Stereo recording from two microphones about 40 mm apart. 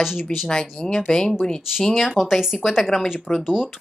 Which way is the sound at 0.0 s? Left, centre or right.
Centre.